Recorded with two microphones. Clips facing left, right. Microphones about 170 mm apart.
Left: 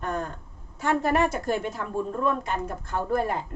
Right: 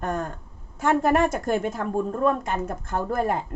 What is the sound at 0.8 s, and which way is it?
A woman's voice, 50° right (ahead or behind).